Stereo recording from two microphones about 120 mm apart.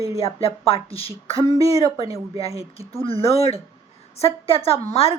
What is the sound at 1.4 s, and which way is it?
Speech, 30° right (ahead or behind).